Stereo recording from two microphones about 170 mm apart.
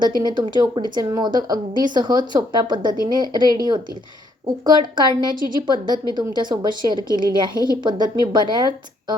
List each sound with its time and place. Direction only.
0.2 s speech: 25° right (ahead or behind)